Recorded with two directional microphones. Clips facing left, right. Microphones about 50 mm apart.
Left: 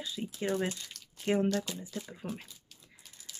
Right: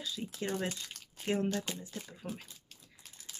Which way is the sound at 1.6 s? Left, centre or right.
Right.